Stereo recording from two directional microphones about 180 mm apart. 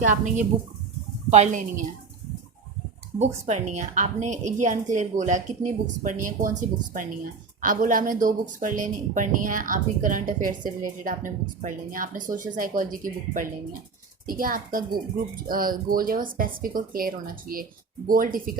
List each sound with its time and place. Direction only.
0.0 s a woman's voice: 45° right (ahead or behind)
3.2 s speech: 40° right (ahead or behind)